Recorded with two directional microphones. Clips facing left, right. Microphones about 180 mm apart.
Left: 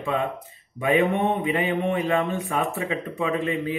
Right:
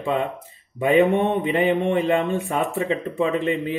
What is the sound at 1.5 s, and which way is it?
Speech, 25° right (ahead or behind).